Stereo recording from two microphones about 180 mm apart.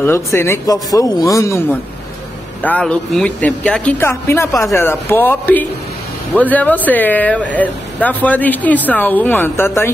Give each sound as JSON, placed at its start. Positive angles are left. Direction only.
{"t": 0.0, "sound": "speech", "side_deg": 15}